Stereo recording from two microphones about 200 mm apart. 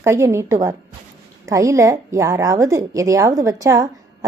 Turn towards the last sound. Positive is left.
turn(degrees=-15)  # may be behind; listen again after turning